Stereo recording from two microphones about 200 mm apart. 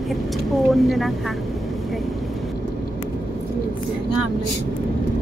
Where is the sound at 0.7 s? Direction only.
Centre (ahead or behind).